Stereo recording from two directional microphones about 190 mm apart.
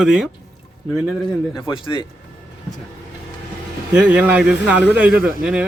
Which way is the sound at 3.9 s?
5° right (ahead or behind).